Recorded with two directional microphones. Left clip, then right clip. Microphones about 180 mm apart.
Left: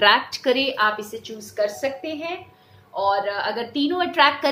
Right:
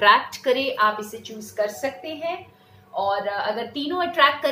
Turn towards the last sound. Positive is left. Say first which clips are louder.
# left 1 dB
turn(degrees=35)  # may be behind; listen again after turning